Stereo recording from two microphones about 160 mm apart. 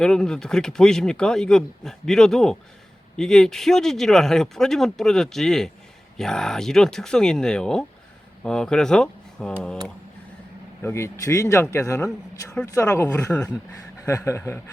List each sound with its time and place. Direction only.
0.0 s speech: 5° left (ahead or behind)
10.8 s speech: 15° left (ahead or behind)